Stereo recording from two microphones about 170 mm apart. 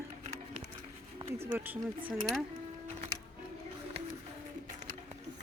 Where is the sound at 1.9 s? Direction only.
30° right (ahead or behind).